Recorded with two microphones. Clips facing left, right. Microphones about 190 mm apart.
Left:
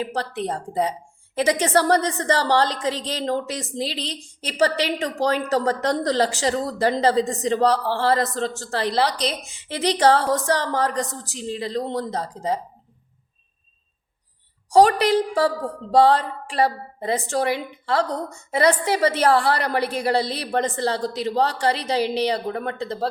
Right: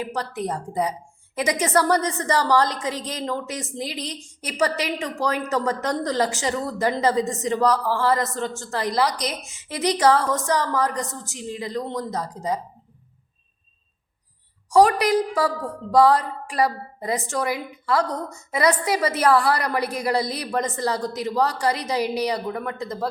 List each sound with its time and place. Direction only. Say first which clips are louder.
0.0 s a woman's voice: left 1 dB; 30° left (ahead or behind)
14.7 s a woman's voice: left 1 dB; 30° left (ahead or behind)